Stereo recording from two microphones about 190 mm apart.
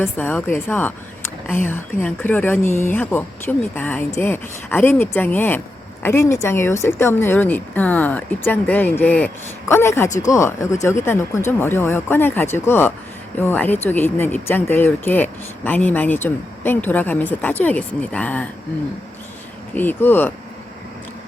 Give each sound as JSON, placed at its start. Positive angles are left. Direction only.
{"t": 0.0, "sound": "speech", "side_deg": 10}
{"t": 19.7, "sound": "speech", "side_deg": 10}